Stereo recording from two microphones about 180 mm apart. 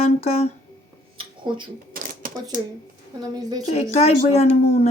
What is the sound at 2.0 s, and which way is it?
Camera, 50° right (ahead or behind).